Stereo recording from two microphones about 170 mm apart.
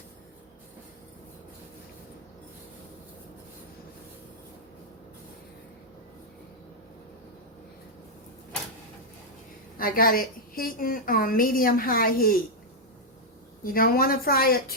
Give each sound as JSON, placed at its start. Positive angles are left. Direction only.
{"t": 9.7, "sound": "a woman's voice", "side_deg": 55}
{"t": 13.7, "sound": "a woman's voice", "side_deg": 60}